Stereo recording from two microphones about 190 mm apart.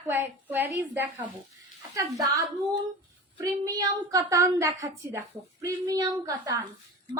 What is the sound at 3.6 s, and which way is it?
A woman's voice, 20° right (ahead or behind).